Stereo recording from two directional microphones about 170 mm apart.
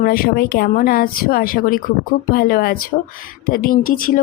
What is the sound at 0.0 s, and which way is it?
Speech, 60° left (ahead or behind).